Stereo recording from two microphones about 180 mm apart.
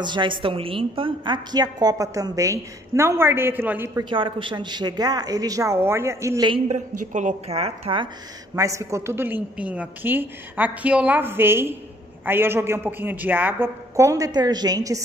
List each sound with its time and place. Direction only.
0.0 s a woman's voice: 25° right (ahead or behind)
4.0 s a woman's voice: 25° right (ahead or behind)
6.5 s a woman's voice: 40° right (ahead or behind)
8.5 s a woman's voice: 15° right (ahead or behind)